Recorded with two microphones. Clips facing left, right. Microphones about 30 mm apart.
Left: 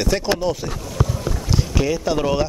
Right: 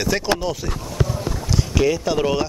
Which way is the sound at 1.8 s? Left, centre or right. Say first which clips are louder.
Right 2 dB; centre.